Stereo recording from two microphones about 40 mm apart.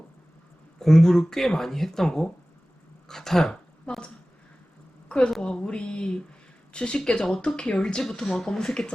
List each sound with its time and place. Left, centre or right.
0.8 s speech: centre
5.0 s a sound: left
5.4 s speech: left
8.2 s speech: centre